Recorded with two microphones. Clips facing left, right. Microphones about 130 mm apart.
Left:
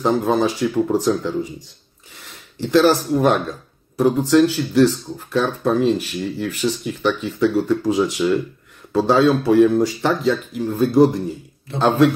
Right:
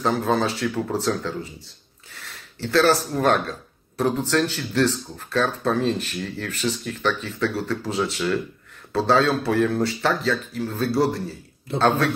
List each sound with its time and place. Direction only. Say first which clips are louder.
0.0 s speech: left 4 dB; 15° left (ahead or behind)